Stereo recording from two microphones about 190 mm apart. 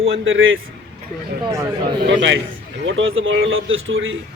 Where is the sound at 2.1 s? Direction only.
75° right (ahead or behind).